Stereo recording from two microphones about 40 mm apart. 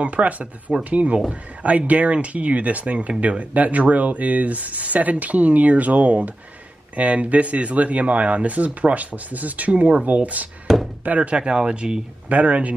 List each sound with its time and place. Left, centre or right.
0.0 s speech: right